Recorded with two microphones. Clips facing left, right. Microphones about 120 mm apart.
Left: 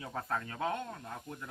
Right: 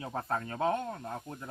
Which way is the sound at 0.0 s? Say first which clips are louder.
Right 3 dB; 35° right (ahead or behind).